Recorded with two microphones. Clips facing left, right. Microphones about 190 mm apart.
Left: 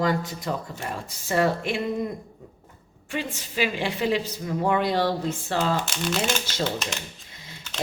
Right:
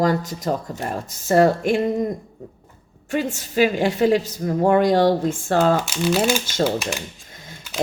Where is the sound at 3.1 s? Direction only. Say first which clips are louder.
Right 8 dB; 45° right (ahead or behind).